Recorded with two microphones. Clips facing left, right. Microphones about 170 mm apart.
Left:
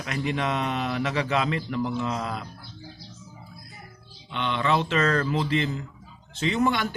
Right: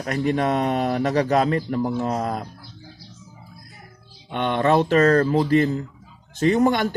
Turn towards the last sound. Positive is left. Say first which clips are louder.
# right 6 dB
turn(degrees=-45)  # may be behind; listen again after turning